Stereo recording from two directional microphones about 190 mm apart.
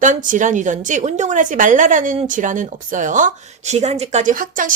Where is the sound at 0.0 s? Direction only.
45° right (ahead or behind).